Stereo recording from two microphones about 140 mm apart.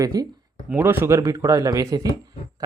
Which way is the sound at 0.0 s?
25° right (ahead or behind).